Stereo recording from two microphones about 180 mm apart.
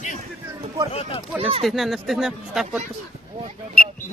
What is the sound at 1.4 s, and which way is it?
Speech, 35° right (ahead or behind).